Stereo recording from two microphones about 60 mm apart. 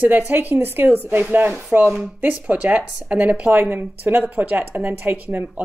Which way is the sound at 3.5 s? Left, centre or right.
Right.